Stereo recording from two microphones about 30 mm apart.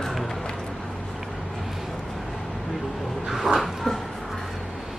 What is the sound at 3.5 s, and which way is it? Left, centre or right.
Dog, centre.